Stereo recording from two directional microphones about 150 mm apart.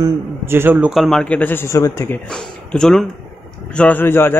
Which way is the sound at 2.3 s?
5° left (ahead or behind).